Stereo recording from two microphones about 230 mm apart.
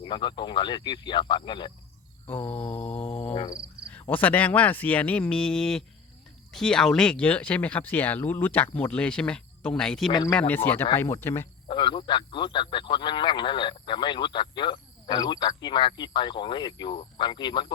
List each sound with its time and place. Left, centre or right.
0.0 s speech: centre
2.4 s mantra: left
3.3 s speech: centre
3.9 s speech: centre
10.1 s speech: centre
11.7 s speech: left